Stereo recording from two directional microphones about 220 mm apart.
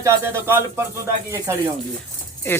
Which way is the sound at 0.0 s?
10° right (ahead or behind).